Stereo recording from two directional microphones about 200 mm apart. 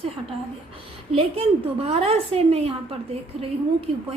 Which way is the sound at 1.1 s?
30° right (ahead or behind).